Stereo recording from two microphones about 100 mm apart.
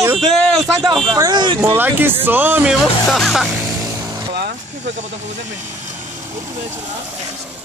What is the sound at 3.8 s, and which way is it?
Vehicle, 35° right (ahead or behind).